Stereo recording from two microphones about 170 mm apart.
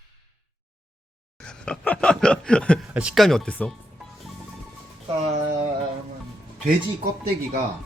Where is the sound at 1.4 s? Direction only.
5° left (ahead or behind).